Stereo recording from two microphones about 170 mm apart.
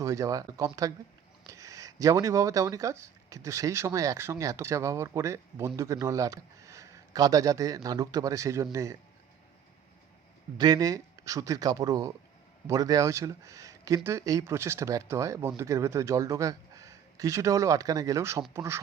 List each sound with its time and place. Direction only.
0.0 s speech: 20° right (ahead or behind)
10.6 s speech: 20° right (ahead or behind)